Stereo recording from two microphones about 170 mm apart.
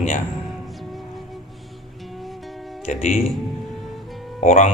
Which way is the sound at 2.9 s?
45° left (ahead or behind).